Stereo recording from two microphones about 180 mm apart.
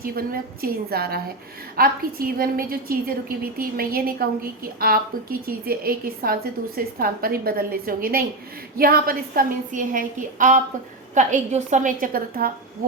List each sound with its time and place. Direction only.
0.0 s a woman's voice: 55° right (ahead or behind)